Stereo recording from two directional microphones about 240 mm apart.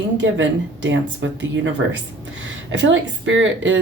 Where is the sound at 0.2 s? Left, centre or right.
Right.